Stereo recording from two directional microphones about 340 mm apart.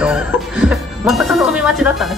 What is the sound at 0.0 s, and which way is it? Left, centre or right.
Music, centre.